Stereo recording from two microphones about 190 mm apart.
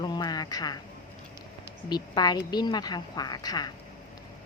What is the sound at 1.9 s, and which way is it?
A woman's voice, 20° left (ahead or behind).